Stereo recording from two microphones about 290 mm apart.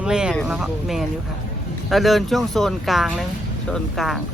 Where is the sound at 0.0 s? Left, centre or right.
Centre.